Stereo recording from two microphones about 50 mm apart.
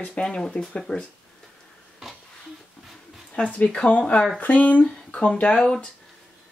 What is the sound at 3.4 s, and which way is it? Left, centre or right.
Speech, left.